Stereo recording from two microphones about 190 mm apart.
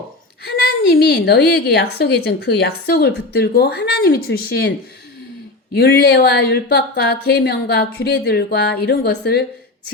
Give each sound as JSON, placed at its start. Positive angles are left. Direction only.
{"t": 0.4, "sound": "a woman's voice", "side_deg": 60}
{"t": 5.7, "sound": "a woman's voice", "side_deg": 60}